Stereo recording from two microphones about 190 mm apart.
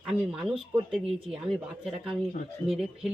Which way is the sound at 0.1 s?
5° right (ahead or behind).